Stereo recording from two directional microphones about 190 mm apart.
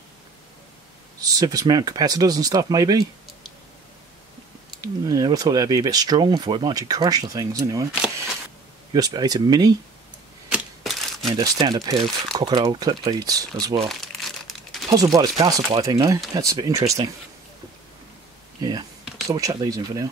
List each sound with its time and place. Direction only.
1.2 s speech: 20° right (ahead or behind)
4.8 s speech: 20° right (ahead or behind)
8.9 s speech: 20° right (ahead or behind)
10.5 s typewriter: 5° right (ahead or behind)
11.3 s speech: 20° right (ahead or behind)
13.8 s crumpling: centre (ahead or behind)
15.4 s speech: 20° right (ahead or behind)
18.6 s speech: 20° right (ahead or behind)